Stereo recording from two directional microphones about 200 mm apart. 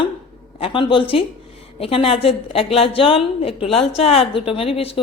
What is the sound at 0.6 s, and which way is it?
A woman's voice, 25° left (ahead or behind).